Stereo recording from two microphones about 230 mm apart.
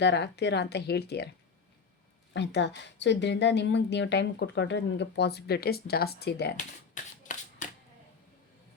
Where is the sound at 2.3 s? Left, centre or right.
Left.